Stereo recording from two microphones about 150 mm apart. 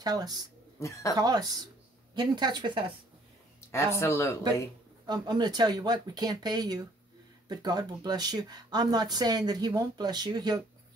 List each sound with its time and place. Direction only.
0.0 s speech: 25° right (ahead or behind)
0.7 s speech: 20° left (ahead or behind)
1.1 s speech: 25° right (ahead or behind)
3.7 s speech: 15° left (ahead or behind)
5.0 s speech: 30° right (ahead or behind)